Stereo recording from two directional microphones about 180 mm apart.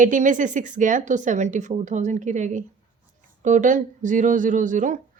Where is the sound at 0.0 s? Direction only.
45° right (ahead or behind).